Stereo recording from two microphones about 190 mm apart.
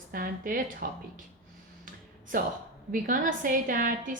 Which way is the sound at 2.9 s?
45° right (ahead or behind).